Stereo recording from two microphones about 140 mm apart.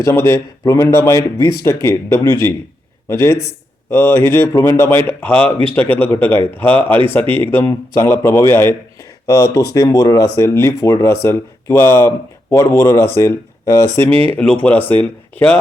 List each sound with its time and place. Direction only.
0.0 s a man's voice: 20° left (ahead or behind)
14.3 s a man's voice: 10° left (ahead or behind)